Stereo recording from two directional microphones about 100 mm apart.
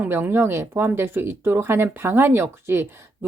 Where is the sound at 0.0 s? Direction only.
20° right (ahead or behind).